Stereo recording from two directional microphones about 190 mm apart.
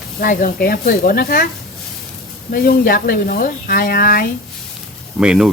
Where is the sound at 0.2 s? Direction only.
50° left (ahead or behind).